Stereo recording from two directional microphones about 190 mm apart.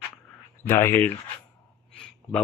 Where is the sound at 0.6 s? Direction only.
10° left (ahead or behind).